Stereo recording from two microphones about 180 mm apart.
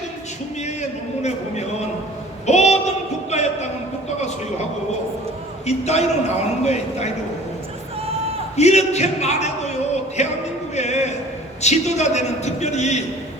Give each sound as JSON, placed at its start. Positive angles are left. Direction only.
{"t": 0.6, "sound": "a man's voice", "side_deg": 40}
{"t": 2.5, "sound": "a sound", "side_deg": 40}
{"t": 5.6, "sound": "a man's voice", "side_deg": 35}
{"t": 8.5, "sound": "speech", "side_deg": 40}
{"t": 10.8, "sound": "a man's voice", "side_deg": 40}